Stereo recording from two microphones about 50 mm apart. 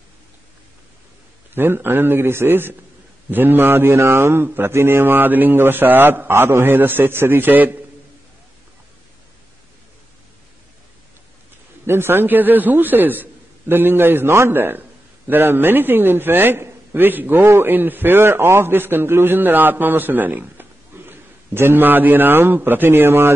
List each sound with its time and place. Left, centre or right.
1.5 s speech: right
3.9 s speech: right
11.8 s speech: right
17.4 s a man's voice: right
17.6 s a man's voice: right